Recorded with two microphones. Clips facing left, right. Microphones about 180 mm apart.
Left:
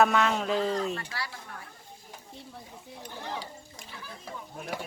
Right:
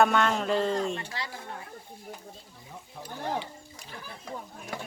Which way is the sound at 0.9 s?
25° right (ahead or behind).